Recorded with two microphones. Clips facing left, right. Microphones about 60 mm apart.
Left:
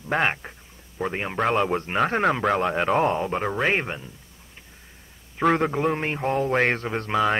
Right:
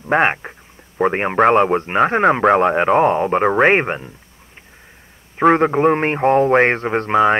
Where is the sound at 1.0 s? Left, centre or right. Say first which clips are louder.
Right 10 dB; right.